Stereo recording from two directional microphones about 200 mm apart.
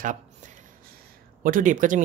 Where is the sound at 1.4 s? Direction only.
40° right (ahead or behind).